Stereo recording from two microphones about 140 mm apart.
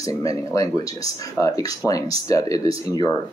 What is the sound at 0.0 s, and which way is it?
Speech, 25° left (ahead or behind).